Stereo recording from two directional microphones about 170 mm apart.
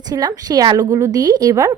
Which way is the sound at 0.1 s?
20° right (ahead or behind).